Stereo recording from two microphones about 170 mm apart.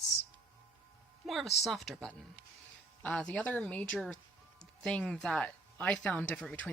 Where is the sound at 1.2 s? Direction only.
Centre (ahead or behind).